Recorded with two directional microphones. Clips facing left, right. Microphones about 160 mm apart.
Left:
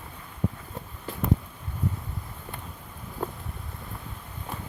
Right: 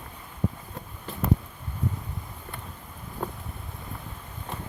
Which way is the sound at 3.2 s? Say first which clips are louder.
Left 1 dB; centre (ahead or behind).